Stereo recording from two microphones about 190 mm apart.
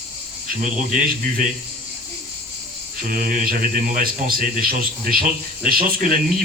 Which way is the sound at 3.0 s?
45° right (ahead or behind).